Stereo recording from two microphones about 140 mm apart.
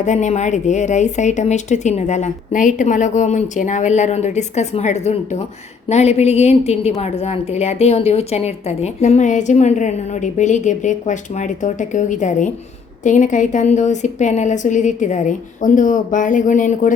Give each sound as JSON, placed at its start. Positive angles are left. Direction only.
{"t": 0.0, "sound": "a woman's voice", "side_deg": 60}